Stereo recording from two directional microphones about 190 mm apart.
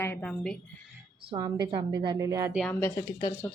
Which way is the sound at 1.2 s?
25° right (ahead or behind).